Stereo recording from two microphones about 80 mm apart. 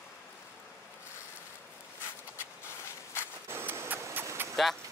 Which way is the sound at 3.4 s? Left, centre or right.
Right.